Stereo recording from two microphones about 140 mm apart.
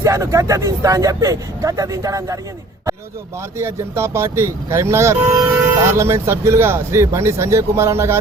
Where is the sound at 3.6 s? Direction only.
20° right (ahead or behind).